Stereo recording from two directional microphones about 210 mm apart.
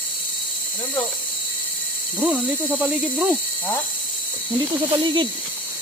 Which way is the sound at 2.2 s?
5° right (ahead or behind).